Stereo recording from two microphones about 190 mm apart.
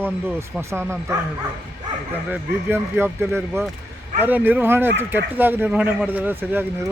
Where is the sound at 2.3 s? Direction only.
10° right (ahead or behind).